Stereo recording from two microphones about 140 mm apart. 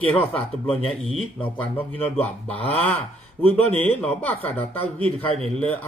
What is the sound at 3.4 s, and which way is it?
Speech, 10° left (ahead or behind).